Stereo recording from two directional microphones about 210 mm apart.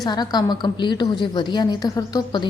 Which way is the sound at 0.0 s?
20° left (ahead or behind).